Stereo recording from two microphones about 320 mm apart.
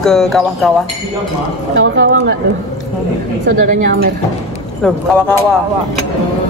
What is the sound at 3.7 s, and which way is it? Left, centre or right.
Speech, right.